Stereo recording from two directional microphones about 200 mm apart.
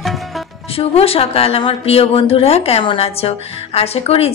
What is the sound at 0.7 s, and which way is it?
A woman's voice, 30° left (ahead or behind).